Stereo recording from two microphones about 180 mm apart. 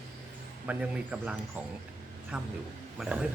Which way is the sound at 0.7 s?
5° right (ahead or behind).